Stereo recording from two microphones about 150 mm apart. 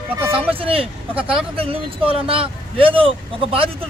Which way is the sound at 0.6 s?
40° right (ahead or behind).